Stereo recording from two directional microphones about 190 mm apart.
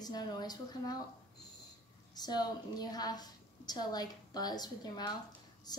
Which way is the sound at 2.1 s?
20° left (ahead or behind).